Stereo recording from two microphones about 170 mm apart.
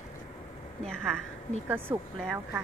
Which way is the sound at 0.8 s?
5° left (ahead or behind).